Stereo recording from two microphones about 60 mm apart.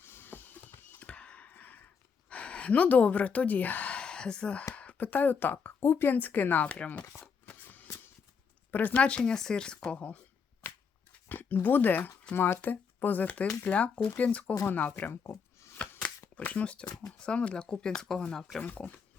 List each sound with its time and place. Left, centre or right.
0.0 s printer: left
1.0 s a sound: centre
2.3 s speech: left
8.7 s speech: left
11.3 s speech: left
15.7 s a sound: left
16.3 s speech: left
18.6 s speech: left